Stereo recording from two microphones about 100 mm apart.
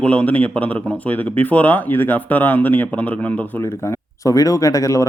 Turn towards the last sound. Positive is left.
turn(degrees=35)  # may be behind; listen again after turning